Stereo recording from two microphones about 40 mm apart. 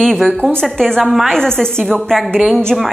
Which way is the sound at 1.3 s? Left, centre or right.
Centre.